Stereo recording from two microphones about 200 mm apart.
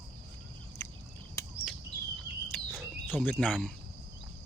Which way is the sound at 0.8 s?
15° left (ahead or behind).